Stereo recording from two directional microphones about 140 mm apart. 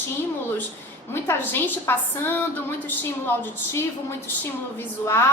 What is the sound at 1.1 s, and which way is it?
A woman's voice, 15° left (ahead or behind).